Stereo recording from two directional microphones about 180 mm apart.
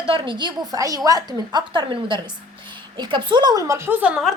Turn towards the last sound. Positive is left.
turn(degrees=-5)  # may be behind; listen again after turning